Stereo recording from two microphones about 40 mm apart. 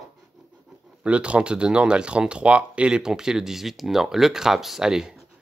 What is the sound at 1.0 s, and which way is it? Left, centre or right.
Speech, right.